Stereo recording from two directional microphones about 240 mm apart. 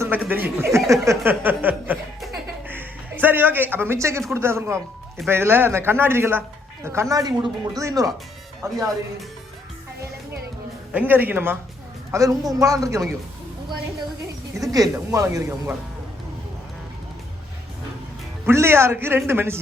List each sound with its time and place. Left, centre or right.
0.0 s speech: centre
1.0 s chuckle: centre
4.4 s speech: centre
10.9 s speech: centre
14.6 s speech: centre
18.4 s speech: centre